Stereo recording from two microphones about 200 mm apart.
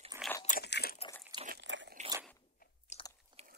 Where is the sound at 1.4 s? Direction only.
60° right (ahead or behind).